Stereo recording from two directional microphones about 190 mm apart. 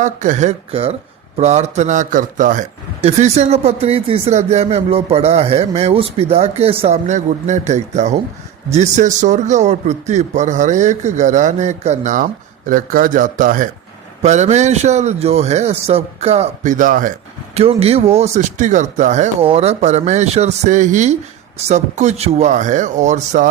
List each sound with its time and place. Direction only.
0.0 s speech: 40° right (ahead or behind)